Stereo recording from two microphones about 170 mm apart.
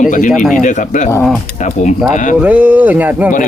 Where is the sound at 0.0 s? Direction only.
50° left (ahead or behind).